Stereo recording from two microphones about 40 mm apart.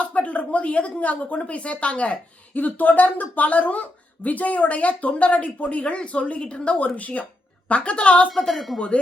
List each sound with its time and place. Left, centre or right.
0.0 s a woman's voice: left
6.7 s a woman's voice: left
8.3 s a woman's voice: centre